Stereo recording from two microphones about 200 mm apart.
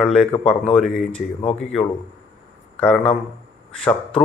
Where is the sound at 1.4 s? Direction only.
30° left (ahead or behind).